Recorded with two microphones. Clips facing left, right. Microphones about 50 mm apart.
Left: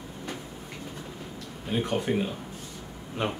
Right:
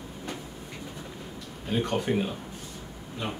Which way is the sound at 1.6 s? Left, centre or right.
Centre.